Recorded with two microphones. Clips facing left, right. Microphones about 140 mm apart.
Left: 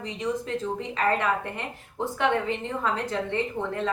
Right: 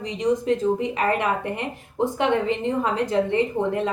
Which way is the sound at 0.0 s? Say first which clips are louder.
Right 7 dB; 15° right (ahead or behind).